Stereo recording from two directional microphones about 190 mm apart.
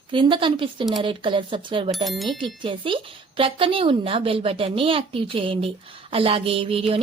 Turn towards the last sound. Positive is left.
turn(degrees=-30)  # may be behind; listen again after turning